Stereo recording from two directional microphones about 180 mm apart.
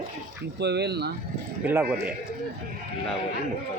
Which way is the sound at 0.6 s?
65° right (ahead or behind).